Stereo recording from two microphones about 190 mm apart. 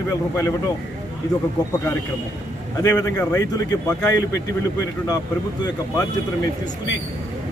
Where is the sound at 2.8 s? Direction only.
20° left (ahead or behind).